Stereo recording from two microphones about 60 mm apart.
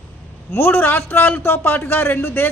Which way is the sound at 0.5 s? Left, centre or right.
Left.